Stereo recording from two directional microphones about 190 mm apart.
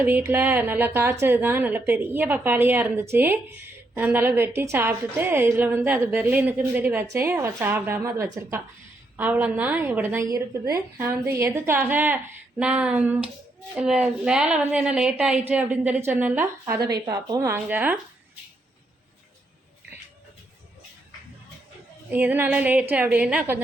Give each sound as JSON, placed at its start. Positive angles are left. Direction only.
{"t": 0.0, "sound": "a woman's voice", "side_deg": -10}
{"t": 22.1, "sound": "a woman's voice", "side_deg": -10}